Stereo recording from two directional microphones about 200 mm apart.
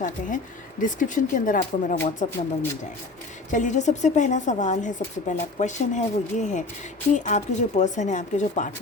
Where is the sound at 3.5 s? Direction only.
40° left (ahead or behind).